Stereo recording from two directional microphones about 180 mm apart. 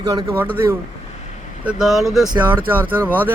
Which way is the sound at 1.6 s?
Centre (ahead or behind).